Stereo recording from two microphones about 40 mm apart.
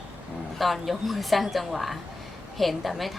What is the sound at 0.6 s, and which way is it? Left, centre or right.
Speech, centre.